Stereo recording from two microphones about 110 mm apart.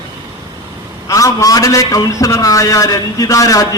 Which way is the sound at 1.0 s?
30° left (ahead or behind).